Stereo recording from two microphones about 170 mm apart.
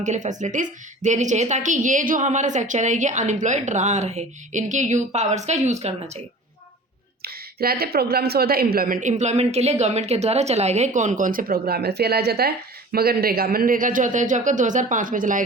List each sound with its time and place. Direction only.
0.0 s a woman's voice: 45° right (ahead or behind)
7.2 s a sound: 65° right (ahead or behind)
7.9 s a woman's voice: 65° right (ahead or behind)